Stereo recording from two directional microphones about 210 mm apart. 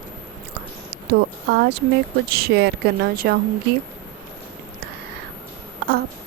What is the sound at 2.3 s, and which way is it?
A woman's voice, 45° right (ahead or behind).